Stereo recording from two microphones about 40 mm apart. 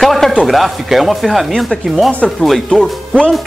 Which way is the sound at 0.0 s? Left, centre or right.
Centre.